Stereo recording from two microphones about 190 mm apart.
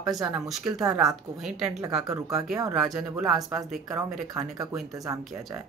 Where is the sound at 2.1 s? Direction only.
20° right (ahead or behind).